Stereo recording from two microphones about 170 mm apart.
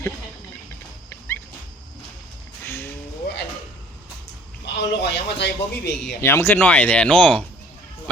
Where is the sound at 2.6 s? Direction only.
15° left (ahead or behind).